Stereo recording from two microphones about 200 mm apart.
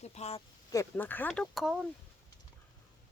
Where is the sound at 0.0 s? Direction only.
35° left (ahead or behind).